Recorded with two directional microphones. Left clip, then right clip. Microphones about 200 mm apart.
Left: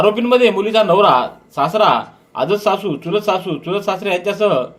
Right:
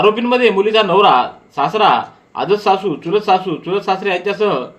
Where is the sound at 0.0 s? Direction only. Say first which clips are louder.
Even; 45° left (ahead or behind).